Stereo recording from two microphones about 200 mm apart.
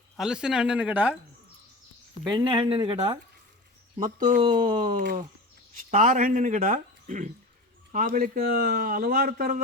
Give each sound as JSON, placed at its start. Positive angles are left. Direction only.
{"t": 0.2, "sound": "speech", "side_deg": -5}
{"t": 2.2, "sound": "speech", "side_deg": -25}
{"t": 4.5, "sound": "speech", "side_deg": -45}